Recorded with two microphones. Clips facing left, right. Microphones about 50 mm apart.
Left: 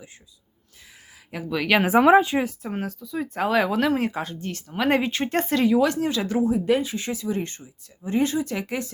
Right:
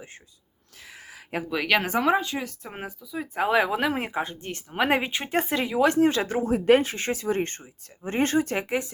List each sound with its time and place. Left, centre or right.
0.8 s a sound: right
1.5 s speech: centre
1.9 s speech: centre
2.7 s speech: centre
4.9 s speech: centre
5.8 s speech: right
6.5 s speech: right
8.5 s speech: right